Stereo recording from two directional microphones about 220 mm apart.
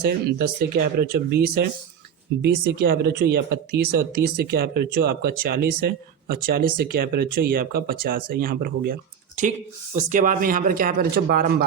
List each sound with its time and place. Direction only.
0.0 s speech: 45° right (ahead or behind)